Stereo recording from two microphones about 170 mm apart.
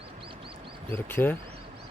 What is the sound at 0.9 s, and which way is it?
Speech, 15° left (ahead or behind).